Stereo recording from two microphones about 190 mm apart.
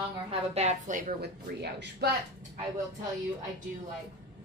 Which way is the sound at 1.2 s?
60° right (ahead or behind).